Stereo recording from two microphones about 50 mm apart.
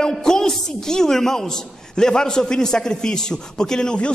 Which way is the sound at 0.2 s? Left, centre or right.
Centre.